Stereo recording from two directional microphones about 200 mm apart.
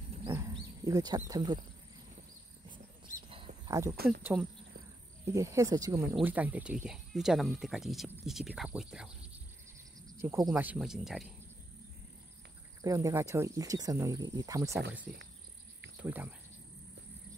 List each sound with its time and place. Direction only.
0.3 s wild animals: 15° right (ahead or behind)
3.3 s a sound: 25° right (ahead or behind)
3.9 s speech: 50° right (ahead or behind)
4.2 s speech: 10° right (ahead or behind)
10.0 s cricket: 10° right (ahead or behind)
10.5 s speech: 5° right (ahead or behind)
12.8 s speech: 15° right (ahead or behind)
16.0 s speech: 10° right (ahead or behind)